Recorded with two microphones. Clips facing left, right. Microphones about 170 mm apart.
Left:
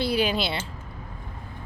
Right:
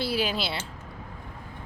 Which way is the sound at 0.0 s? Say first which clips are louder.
Left 4 dB; 5° right (ahead or behind).